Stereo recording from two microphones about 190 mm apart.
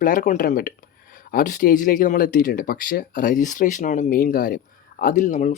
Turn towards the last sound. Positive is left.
turn(degrees=40)  # may be behind; listen again after turning